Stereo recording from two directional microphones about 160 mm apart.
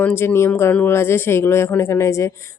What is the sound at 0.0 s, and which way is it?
Speech, 10° left (ahead or behind).